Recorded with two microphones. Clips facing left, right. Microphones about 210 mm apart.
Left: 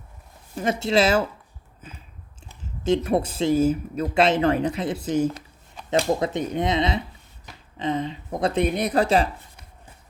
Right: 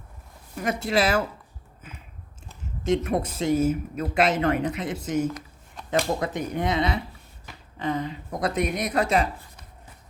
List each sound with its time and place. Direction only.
0.5 s speech: 25° left (ahead or behind)
2.8 s speech: 30° left (ahead or behind)